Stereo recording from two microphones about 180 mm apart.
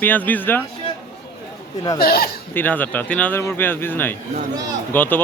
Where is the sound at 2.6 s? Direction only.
10° left (ahead or behind).